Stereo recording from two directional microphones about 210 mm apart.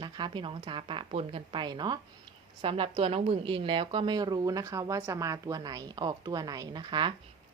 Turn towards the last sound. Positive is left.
turn(degrees=-20)  # may be behind; listen again after turning